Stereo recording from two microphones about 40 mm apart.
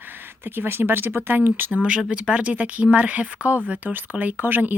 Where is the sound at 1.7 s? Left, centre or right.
Right.